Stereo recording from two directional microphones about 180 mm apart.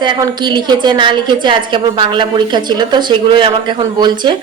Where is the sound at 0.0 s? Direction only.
25° right (ahead or behind).